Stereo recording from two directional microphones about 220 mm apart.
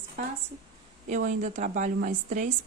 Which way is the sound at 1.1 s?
35° right (ahead or behind).